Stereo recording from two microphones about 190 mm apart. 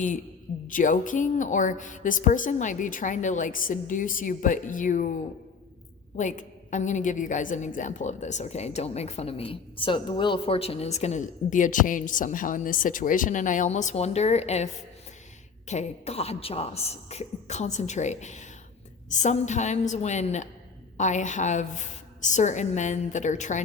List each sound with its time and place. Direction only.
0.7 s a woman's voice: 45° left (ahead or behind)
6.1 s a woman's voice: 40° left (ahead or behind)